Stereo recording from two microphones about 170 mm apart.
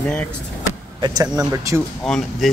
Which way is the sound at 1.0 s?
25° right (ahead or behind).